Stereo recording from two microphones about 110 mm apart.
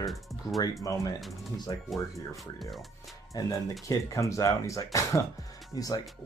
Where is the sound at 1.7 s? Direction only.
45° left (ahead or behind).